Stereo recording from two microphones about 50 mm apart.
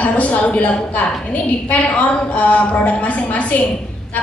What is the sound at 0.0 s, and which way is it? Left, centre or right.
A woman's voice, left.